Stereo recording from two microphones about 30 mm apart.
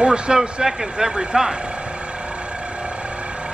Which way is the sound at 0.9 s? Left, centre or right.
Centre.